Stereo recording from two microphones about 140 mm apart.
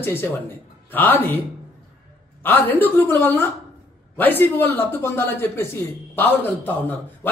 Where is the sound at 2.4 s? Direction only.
15° left (ahead or behind).